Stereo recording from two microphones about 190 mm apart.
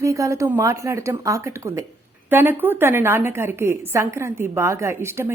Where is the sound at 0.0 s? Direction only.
15° right (ahead or behind).